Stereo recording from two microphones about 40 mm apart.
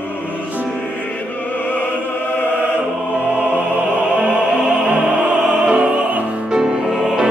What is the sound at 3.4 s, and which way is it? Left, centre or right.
Music, right.